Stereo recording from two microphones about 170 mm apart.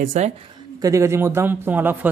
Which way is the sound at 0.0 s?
50° right (ahead or behind).